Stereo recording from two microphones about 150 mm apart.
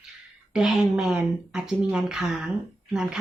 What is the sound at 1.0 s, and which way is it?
Speech, 5° right (ahead or behind).